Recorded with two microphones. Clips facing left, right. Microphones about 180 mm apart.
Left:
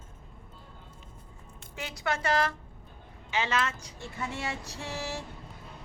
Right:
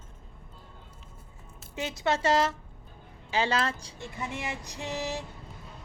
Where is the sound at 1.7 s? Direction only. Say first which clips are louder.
Right 4 dB; 25° right (ahead or behind).